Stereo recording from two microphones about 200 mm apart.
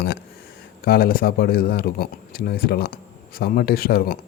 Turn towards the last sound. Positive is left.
turn(degrees=50)  # may be behind; listen again after turning